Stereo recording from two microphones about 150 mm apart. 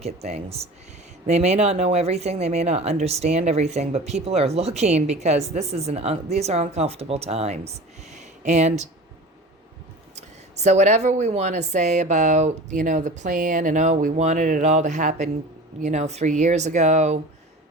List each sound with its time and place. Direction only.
0.0 s speech: 45° right (ahead or behind)
10.2 s speech: 50° right (ahead or behind)